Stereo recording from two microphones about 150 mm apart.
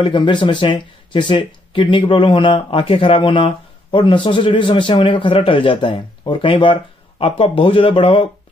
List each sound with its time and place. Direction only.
0.0 s speech: 30° left (ahead or behind)